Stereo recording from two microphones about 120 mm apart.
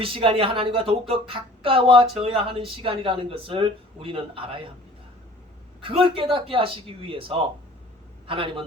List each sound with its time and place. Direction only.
0.0 s speech: 50° right (ahead or behind)
5.8 s speech: 50° right (ahead or behind)